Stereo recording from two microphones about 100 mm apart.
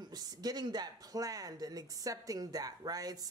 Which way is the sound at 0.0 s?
40° right (ahead or behind).